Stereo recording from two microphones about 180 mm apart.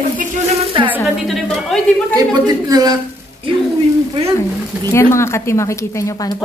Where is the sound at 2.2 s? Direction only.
20° right (ahead or behind).